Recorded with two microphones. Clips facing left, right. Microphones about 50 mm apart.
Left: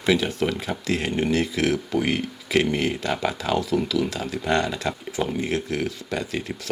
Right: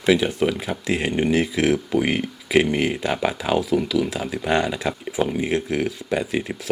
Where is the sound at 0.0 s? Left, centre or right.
Centre.